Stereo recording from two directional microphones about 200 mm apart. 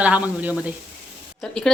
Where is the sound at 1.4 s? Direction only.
5° left (ahead or behind).